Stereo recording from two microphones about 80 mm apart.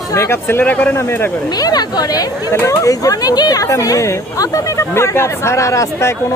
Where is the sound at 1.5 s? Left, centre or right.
Left.